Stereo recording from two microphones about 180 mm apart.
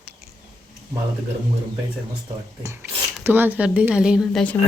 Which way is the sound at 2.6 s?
15° right (ahead or behind).